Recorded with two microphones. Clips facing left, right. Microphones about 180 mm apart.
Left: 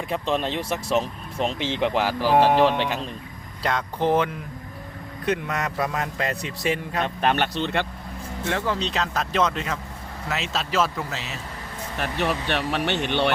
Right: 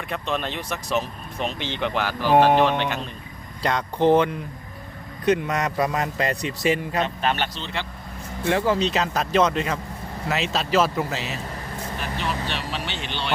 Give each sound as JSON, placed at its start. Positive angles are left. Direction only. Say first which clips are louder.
{"t": 0.3, "sound": "speech", "louder": "left 3 dB", "side_deg": 30}
{"t": 2.3, "sound": "speech", "louder": "right 1 dB", "side_deg": 0}
{"t": 7.0, "sound": "speech", "louder": "left 1 dB", "side_deg": 55}
{"t": 8.4, "sound": "speech", "louder": "right 5 dB", "side_deg": -5}
{"t": 11.9, "sound": "speech", "louder": "left 4 dB", "side_deg": 60}